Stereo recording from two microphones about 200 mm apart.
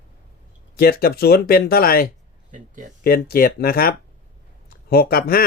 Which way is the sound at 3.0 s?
50° left (ahead or behind).